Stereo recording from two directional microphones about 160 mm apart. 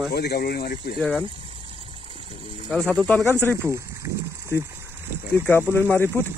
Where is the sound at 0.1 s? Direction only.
80° left.